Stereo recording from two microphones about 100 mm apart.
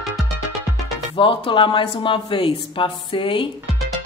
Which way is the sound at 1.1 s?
60° left (ahead or behind).